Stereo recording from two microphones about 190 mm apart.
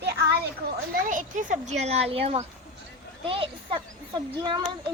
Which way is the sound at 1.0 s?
45° right (ahead or behind).